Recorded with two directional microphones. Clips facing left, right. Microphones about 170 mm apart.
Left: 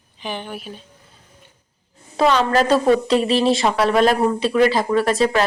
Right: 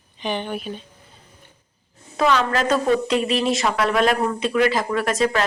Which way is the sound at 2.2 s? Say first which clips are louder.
Left 3 dB; 35° left (ahead or behind).